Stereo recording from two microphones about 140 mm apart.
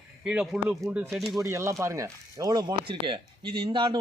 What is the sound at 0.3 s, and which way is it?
Speech, 5° right (ahead or behind).